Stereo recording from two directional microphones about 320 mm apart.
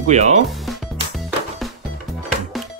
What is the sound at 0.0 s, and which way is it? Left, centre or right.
Speech, right.